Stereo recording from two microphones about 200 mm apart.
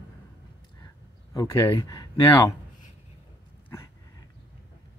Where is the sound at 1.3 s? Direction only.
15° left (ahead or behind).